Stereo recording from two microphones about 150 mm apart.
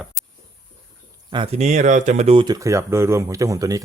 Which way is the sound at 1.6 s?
50° right (ahead or behind).